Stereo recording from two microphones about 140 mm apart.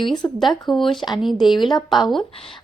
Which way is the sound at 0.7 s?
Centre (ahead or behind).